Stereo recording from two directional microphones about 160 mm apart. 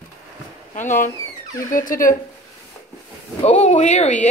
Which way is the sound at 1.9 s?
60° left (ahead or behind).